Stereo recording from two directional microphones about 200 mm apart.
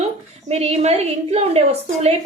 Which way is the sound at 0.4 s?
30° right (ahead or behind).